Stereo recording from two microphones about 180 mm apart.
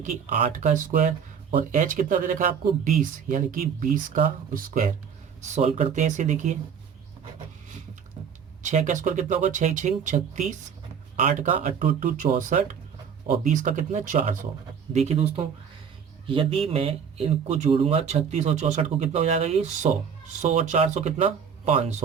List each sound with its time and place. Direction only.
0.0 s speech: 40° right (ahead or behind)
5.5 s speech: 40° right (ahead or behind)
8.6 s speech: 40° right (ahead or behind)
14.9 s speech: 35° right (ahead or behind)